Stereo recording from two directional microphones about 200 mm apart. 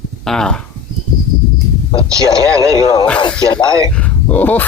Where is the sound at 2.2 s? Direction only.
15° right (ahead or behind).